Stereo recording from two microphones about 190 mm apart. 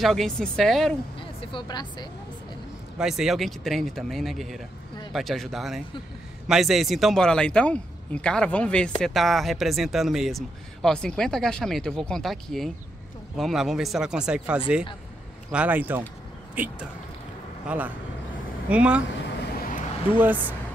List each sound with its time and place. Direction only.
0.0 s speech: centre (ahead or behind)
1.4 s speech: 25° left (ahead or behind)
3.0 s speech: centre (ahead or behind)
20.2 s speech: 10° right (ahead or behind)